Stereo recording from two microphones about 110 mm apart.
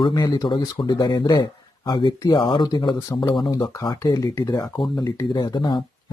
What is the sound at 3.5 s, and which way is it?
Speech, 30° left (ahead or behind).